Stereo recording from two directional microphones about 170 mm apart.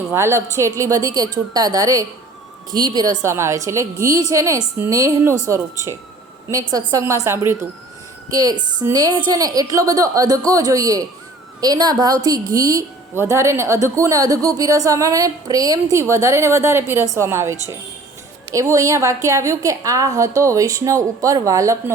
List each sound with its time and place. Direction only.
0.1 s a woman's voice: 15° right (ahead or behind)